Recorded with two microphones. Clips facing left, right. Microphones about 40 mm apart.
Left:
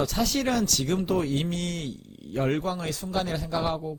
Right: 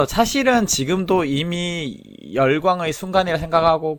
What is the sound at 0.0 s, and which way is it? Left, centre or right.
Speech, right.